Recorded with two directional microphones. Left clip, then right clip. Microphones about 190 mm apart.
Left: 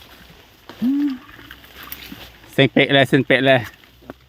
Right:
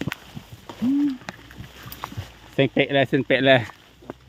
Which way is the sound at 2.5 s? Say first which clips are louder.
Left 5 dB; 45° left (ahead or behind).